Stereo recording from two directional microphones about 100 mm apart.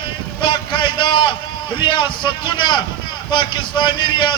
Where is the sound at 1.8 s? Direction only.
50° left (ahead or behind).